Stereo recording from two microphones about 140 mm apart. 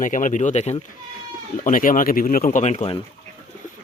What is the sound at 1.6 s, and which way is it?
Speech, 75° left (ahead or behind).